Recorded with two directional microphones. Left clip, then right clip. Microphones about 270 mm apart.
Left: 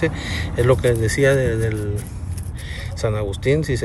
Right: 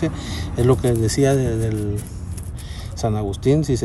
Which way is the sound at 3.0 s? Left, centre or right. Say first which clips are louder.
Even; centre.